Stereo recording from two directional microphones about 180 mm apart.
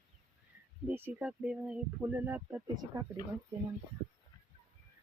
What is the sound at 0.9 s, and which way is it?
Speech, 10° right (ahead or behind).